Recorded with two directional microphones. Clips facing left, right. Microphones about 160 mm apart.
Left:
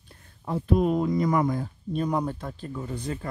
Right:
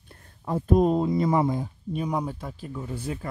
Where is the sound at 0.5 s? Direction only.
45° right (ahead or behind).